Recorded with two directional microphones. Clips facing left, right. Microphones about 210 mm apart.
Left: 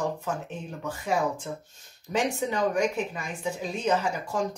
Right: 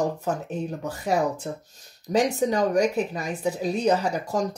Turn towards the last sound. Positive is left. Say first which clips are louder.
# right 3 dB
turn(degrees=-40)  # may be behind; listen again after turning